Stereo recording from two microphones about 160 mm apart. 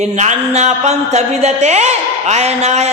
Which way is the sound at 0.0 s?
45° right (ahead or behind).